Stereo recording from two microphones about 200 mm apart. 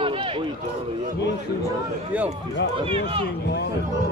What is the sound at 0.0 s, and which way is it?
Run, 25° right (ahead or behind).